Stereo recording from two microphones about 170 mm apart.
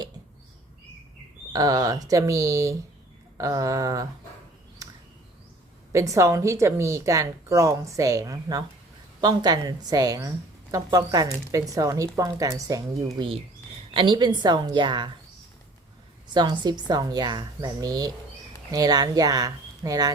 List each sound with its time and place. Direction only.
1.5 s speech: 20° right (ahead or behind)
4.8 s a sound: 20° right (ahead or behind)
5.9 s speech: 20° right (ahead or behind)
13.1 s speech: 30° right (ahead or behind)
16.3 s speech: 25° right (ahead or behind)